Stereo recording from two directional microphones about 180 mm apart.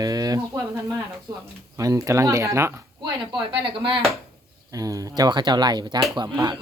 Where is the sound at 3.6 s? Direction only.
30° right (ahead or behind).